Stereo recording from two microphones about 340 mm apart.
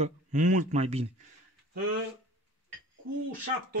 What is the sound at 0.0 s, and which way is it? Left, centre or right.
Speech, right.